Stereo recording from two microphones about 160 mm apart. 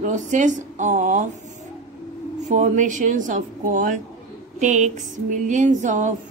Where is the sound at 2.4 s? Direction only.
50° right (ahead or behind).